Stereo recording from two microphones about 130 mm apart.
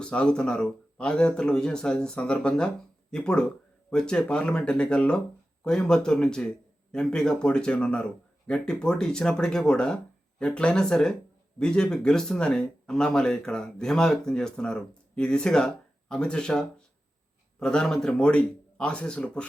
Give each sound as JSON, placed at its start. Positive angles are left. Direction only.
{"t": 0.0, "sound": "speech", "side_deg": 10}